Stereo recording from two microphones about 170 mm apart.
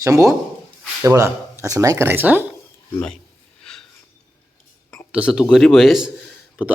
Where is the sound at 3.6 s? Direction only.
5° left (ahead or behind).